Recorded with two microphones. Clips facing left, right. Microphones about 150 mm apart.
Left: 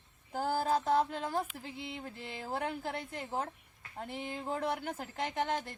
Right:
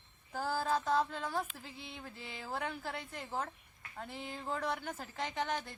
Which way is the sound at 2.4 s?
20° left (ahead or behind).